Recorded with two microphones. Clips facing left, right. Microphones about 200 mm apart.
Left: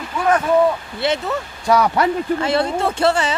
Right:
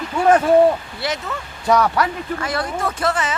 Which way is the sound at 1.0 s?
25° left (ahead or behind).